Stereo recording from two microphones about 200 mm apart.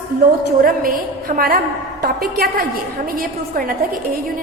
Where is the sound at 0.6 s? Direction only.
45° right (ahead or behind).